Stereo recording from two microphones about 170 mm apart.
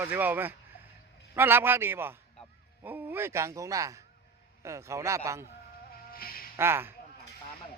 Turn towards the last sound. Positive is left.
turn(degrees=-15)  # may be behind; listen again after turning